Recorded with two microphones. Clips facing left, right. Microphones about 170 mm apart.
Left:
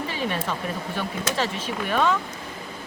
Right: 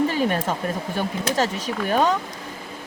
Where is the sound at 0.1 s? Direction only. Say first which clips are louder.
Right 5 dB; 45° right (ahead or behind).